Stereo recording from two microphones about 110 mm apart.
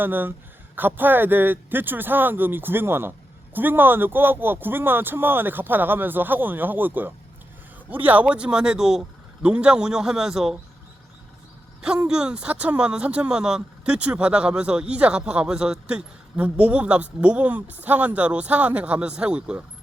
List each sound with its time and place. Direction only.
0.0 s speech: 20° right (ahead or behind)
12.0 s speech: 5° right (ahead or behind)